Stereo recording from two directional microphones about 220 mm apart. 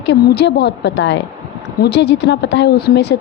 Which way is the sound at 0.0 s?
55° left (ahead or behind).